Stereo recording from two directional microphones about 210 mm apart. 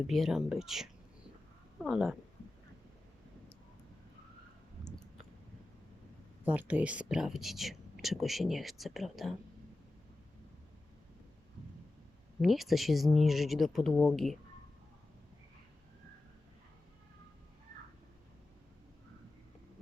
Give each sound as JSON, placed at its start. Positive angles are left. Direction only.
{"t": 0.1, "sound": "speech", "side_deg": 0}
{"t": 4.9, "sound": "a sound", "side_deg": 5}
{"t": 6.4, "sound": "speech", "side_deg": -5}
{"t": 12.4, "sound": "speech", "side_deg": 0}